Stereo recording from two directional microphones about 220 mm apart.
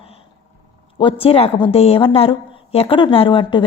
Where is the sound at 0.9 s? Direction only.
25° left (ahead or behind).